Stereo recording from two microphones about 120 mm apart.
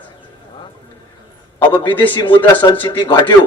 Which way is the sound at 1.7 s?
40° left (ahead or behind).